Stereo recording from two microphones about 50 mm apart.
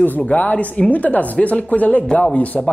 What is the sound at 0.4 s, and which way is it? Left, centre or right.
Speech, left.